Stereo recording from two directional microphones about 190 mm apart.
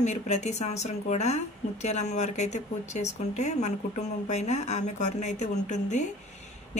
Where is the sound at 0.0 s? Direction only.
35° left (ahead or behind).